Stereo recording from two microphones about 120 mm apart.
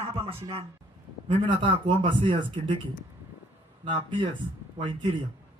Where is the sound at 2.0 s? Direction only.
90° right.